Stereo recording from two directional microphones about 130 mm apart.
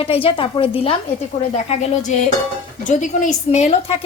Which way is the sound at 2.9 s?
70° left (ahead or behind).